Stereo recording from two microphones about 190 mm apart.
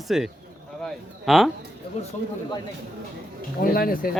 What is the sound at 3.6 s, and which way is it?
Speech, 50° left (ahead or behind).